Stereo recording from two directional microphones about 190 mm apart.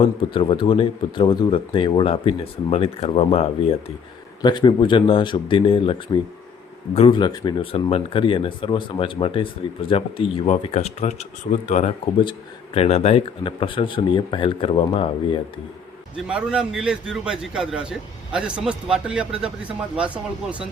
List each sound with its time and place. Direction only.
0.0 s speech: 25° left (ahead or behind)
16.1 s a man's voice: 5° right (ahead or behind)